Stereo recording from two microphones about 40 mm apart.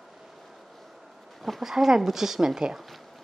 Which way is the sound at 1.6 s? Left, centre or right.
Centre.